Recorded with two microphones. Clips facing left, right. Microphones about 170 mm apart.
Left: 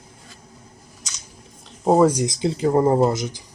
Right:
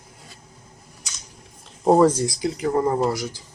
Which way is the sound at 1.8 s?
5° left (ahead or behind).